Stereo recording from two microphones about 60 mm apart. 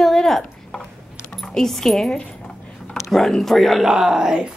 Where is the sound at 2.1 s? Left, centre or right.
Centre.